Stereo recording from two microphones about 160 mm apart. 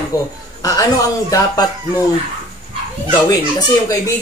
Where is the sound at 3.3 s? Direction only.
25° left (ahead or behind).